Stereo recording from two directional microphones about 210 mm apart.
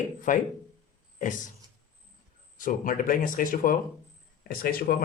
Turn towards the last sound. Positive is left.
turn(degrees=45)  # may be behind; listen again after turning